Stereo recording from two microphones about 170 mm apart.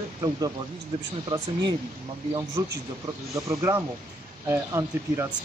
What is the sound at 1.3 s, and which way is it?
Speech, 25° right (ahead or behind).